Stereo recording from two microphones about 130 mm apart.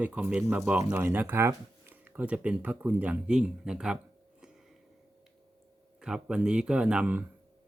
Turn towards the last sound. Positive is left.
turn(degrees=-10)  # may be behind; listen again after turning